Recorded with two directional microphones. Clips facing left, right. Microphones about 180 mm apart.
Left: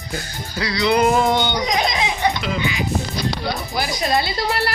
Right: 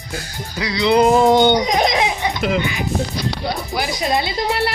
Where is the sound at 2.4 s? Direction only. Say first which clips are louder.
Right 5 dB; 60° right (ahead or behind).